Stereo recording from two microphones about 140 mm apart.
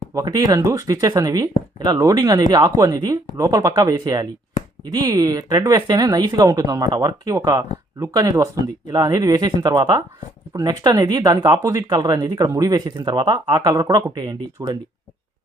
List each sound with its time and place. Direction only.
0.1 s speech: 25° right (ahead or behind)